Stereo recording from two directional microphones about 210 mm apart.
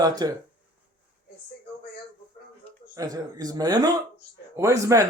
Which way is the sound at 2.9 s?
15° right (ahead or behind).